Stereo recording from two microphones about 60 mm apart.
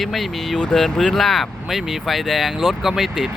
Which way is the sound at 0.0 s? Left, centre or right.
Centre.